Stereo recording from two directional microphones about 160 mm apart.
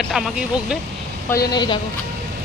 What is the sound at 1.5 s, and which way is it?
Speech, 30° left (ahead or behind).